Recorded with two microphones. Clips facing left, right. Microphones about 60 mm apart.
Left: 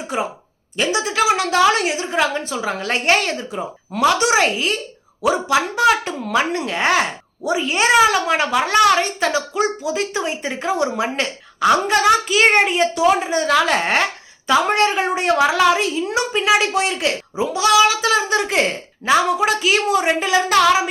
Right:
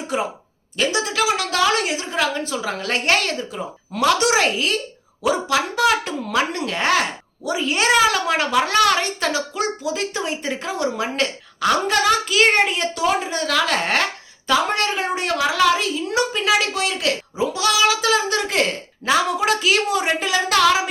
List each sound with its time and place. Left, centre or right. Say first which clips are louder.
0.1 s a woman's voice: even; centre
2.0 s a woman's voice: left 2 dB; left
4.0 s a woman's voice: left 2 dB; centre; by 17.1 s left
17.3 s a woman's voice: left 7 dB; centre